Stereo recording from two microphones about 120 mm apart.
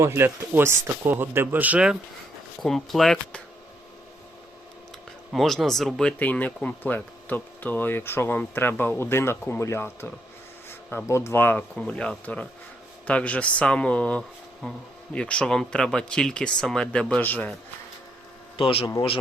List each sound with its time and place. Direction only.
0.0 s speech: 20° right (ahead or behind)
2.6 s speech: centre (ahead or behind)
5.3 s speech: centre (ahead or behind); by 11.5 s 20° left (ahead or behind)
11.5 s speech: 5° left (ahead or behind)